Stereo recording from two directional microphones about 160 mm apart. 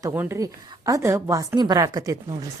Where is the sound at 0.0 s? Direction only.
15° right (ahead or behind).